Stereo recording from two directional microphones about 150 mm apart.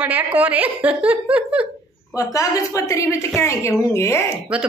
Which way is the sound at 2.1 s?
20° left (ahead or behind).